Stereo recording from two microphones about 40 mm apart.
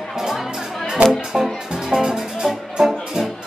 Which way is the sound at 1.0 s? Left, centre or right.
Right.